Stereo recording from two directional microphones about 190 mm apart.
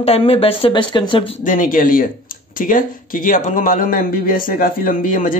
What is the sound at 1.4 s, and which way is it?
Speech, 45° left (ahead or behind).